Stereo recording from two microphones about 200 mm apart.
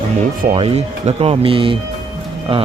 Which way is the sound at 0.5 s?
30° right (ahead or behind).